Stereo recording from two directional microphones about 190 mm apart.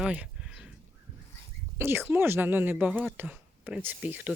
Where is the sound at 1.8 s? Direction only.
10° right (ahead or behind).